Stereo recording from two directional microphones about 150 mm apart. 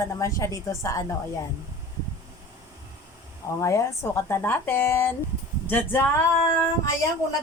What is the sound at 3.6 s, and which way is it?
Speech, 20° left (ahead or behind).